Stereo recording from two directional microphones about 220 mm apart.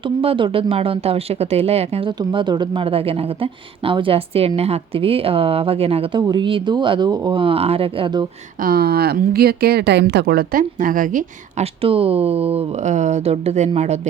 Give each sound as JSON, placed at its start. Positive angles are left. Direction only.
{"t": 0.2, "sound": "speech", "side_deg": -25}
{"t": 8.6, "sound": "a woman's voice", "side_deg": -45}